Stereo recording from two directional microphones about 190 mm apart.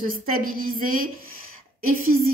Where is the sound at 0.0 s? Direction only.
50° right (ahead or behind).